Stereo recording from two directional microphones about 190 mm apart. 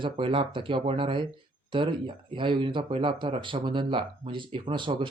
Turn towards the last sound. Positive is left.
turn(degrees=-25)  # may be behind; listen again after turning